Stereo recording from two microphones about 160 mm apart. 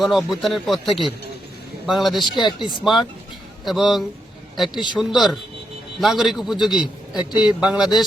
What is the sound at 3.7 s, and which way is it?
A man's voice, centre (ahead or behind).